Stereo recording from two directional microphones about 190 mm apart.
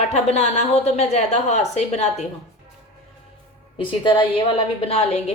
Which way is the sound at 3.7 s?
25° left (ahead or behind).